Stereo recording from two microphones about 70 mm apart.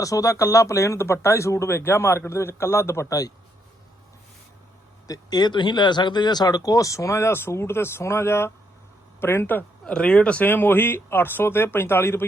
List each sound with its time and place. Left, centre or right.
0.0 s speech: left
5.0 s speech: left
9.8 s speech: centre
10.5 s speech: left